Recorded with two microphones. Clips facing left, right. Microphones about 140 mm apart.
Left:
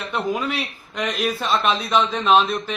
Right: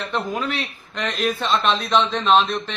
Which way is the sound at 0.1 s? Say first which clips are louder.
Left 3 dB; 10° left (ahead or behind).